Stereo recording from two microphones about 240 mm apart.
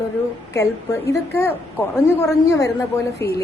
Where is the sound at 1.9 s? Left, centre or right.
Centre.